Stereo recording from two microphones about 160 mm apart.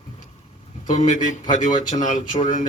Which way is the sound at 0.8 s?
50° left (ahead or behind).